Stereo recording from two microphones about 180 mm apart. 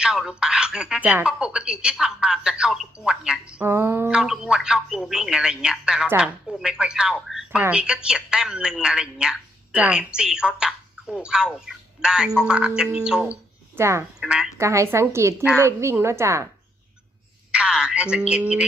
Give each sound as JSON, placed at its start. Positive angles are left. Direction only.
{"t": 0.0, "sound": "speech", "side_deg": -5}
{"t": 13.7, "sound": "speech", "side_deg": -15}
{"t": 14.2, "sound": "a woman's voice", "side_deg": -5}
{"t": 14.6, "sound": "a woman's voice", "side_deg": -15}
{"t": 17.5, "sound": "speech", "side_deg": -5}